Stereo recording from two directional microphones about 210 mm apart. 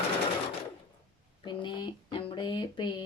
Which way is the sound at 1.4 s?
20° left (ahead or behind).